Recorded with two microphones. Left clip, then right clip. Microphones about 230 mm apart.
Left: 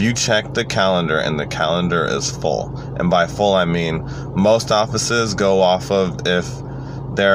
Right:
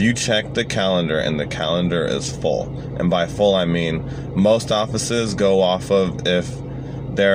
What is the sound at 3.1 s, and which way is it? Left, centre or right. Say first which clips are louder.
Speech: left 2 dB; left.